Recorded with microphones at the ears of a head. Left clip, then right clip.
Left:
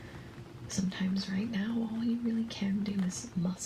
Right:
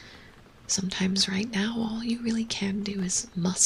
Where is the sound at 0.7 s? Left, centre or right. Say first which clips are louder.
Right 8 dB; right.